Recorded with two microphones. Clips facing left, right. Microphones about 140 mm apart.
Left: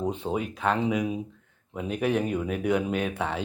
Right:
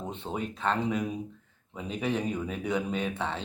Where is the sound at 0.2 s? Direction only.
10° left (ahead or behind).